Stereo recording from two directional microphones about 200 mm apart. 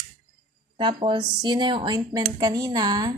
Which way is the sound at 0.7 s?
25° right (ahead or behind).